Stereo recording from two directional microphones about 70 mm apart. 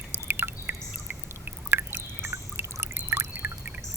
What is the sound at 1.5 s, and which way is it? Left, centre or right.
Trickle, right.